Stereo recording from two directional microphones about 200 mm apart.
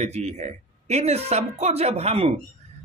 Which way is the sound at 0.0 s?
35° right (ahead or behind).